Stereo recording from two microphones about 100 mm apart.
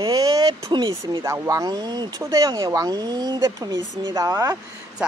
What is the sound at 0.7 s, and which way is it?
Speech, 50° right (ahead or behind).